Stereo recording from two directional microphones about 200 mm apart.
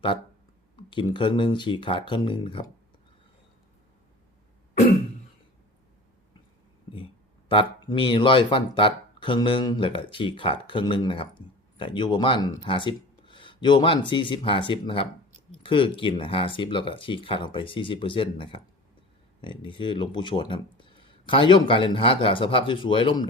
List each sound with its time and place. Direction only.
0.8 s speech: 25° left (ahead or behind)
6.9 s speech: 25° left (ahead or behind)